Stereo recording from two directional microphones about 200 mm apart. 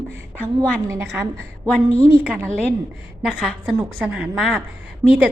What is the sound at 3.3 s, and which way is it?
A woman's voice, 5° left (ahead or behind).